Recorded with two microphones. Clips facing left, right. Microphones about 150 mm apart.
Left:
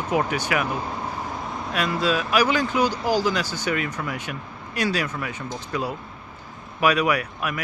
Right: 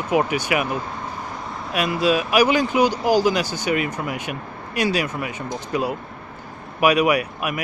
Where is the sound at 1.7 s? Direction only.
15° right (ahead or behind).